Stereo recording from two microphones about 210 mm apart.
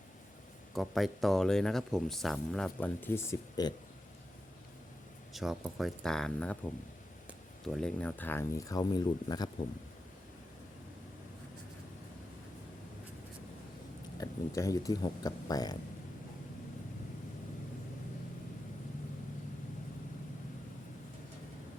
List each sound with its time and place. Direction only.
0.7 s speech: centre (ahead or behind); by 3.8 s 15° left (ahead or behind)
5.3 s speech: centre (ahead or behind); by 9.5 s 20° left (ahead or behind)
14.2 s speech: 15° left (ahead or behind)